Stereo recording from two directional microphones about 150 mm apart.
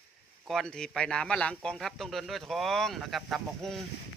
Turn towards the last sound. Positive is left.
turn(degrees=0)  # may be behind; listen again after turning